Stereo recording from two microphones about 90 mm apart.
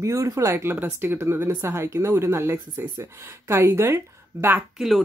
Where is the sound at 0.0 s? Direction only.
35° right (ahead or behind).